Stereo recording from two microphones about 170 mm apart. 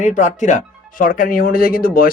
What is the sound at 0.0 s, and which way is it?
Speech, 45° left (ahead or behind).